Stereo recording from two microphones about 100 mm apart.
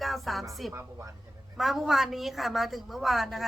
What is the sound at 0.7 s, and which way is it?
Speech, 30° right (ahead or behind).